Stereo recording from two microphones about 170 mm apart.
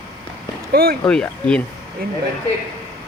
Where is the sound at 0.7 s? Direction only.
60° right (ahead or behind).